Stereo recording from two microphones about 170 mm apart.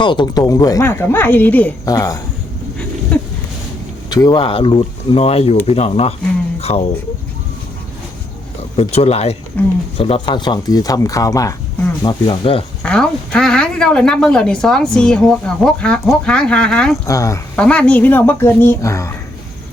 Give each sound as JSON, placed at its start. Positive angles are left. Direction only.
{"t": 0.0, "sound": "speech", "side_deg": 30}
{"t": 1.8, "sound": "speech", "side_deg": 20}
{"t": 3.1, "sound": "a sound", "side_deg": 10}
{"t": 4.1, "sound": "speech", "side_deg": 25}
{"t": 6.6, "sound": "a sound", "side_deg": 40}
{"t": 8.7, "sound": "speech", "side_deg": 35}
{"t": 12.8, "sound": "speech", "side_deg": 5}
{"t": 17.1, "sound": "speech", "side_deg": 20}
{"t": 17.6, "sound": "speech", "side_deg": 5}